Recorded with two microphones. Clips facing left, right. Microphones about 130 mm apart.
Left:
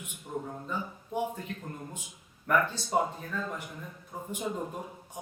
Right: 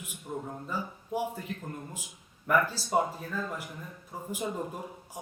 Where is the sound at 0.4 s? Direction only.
5° right (ahead or behind).